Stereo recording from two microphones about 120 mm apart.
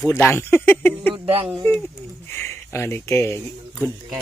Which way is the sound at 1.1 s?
55° right (ahead or behind).